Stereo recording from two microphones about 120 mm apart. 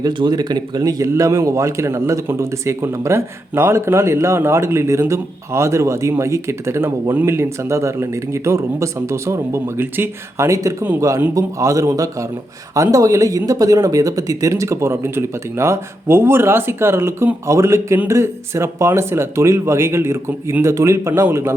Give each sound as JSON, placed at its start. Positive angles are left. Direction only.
{"t": 0.0, "sound": "a man's voice", "side_deg": -40}